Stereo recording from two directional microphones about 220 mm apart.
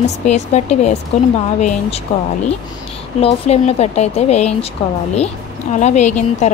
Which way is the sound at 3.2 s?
25° left (ahead or behind).